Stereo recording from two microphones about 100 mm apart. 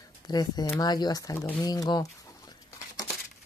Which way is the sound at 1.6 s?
40° left (ahead or behind).